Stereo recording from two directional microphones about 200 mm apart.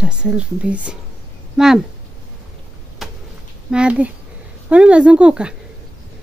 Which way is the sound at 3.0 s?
Centre (ahead or behind).